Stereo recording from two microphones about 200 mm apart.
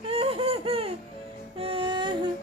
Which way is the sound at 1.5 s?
25° right (ahead or behind).